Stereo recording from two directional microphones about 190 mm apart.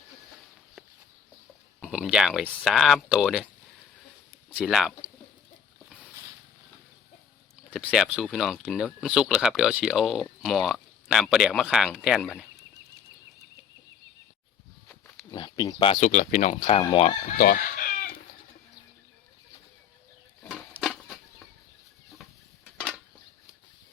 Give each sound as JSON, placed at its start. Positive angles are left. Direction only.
{"t": 1.8, "sound": "speech", "side_deg": -5}
{"t": 4.4, "sound": "speech", "side_deg": -5}
{"t": 7.7, "sound": "speech", "side_deg": -5}
{"t": 15.3, "sound": "speech", "side_deg": 20}
{"t": 17.3, "sound": "speech", "side_deg": 50}
{"t": 20.5, "sound": "a sound", "side_deg": -5}
{"t": 22.2, "sound": "a sound", "side_deg": 0}